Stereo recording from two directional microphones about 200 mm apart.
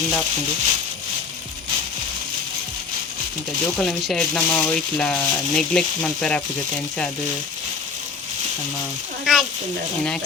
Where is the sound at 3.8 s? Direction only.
Centre (ahead or behind).